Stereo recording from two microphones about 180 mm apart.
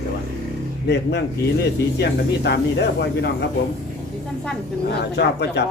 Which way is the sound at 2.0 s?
70° left (ahead or behind).